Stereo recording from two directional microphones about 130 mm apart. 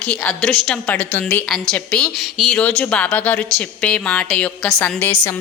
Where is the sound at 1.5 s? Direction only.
5° left (ahead or behind).